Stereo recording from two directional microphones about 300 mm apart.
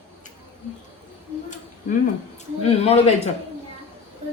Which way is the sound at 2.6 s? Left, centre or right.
Left.